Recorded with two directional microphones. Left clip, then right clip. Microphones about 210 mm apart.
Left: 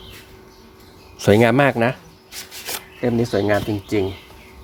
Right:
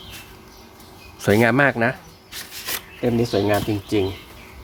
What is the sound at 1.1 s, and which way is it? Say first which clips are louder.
Speech: left 2 dB; 15° left (ahead or behind).